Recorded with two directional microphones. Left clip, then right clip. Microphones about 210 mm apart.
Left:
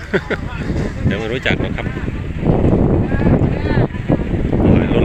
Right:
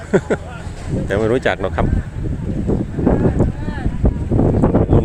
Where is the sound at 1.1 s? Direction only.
25° right (ahead or behind).